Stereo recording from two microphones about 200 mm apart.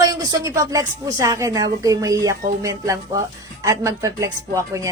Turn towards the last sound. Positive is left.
turn(degrees=-15)  # may be behind; listen again after turning